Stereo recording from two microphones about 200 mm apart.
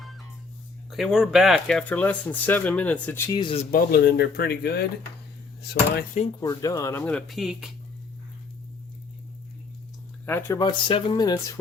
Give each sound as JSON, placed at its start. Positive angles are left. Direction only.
{"t": 0.9, "sound": "speech", "side_deg": 0}
{"t": 3.3, "sound": "speech", "side_deg": 30}
{"t": 3.7, "sound": "speech", "side_deg": 50}
{"t": 6.4, "sound": "speech", "side_deg": 15}
{"t": 10.2, "sound": "speech", "side_deg": 10}
{"t": 10.6, "sound": "speech", "side_deg": 25}